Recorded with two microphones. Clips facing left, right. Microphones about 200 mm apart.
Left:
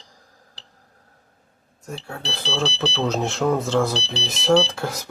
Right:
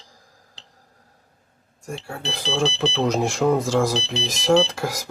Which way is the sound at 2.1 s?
10° right (ahead or behind).